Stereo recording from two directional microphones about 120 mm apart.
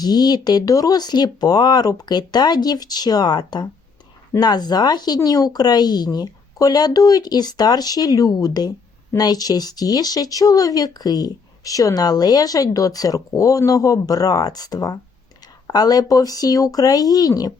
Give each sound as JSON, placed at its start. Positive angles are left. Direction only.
{"t": 0.0, "sound": "speech", "side_deg": 35}